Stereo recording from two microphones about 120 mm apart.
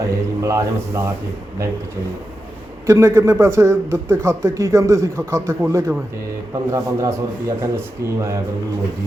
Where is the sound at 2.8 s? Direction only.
25° right (ahead or behind).